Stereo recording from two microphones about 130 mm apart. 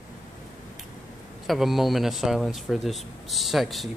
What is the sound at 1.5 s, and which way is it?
Speech, centre (ahead or behind).